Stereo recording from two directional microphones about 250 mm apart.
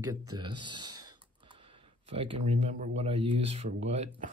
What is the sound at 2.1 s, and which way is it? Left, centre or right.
Speech, right.